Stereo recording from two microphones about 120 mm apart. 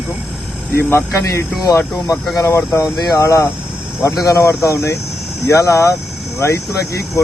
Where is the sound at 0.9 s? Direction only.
25° left (ahead or behind).